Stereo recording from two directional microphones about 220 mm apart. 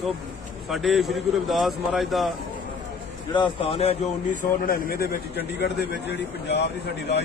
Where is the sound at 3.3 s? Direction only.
25° left (ahead or behind).